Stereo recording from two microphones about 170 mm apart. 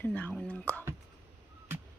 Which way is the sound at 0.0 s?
10° left (ahead or behind).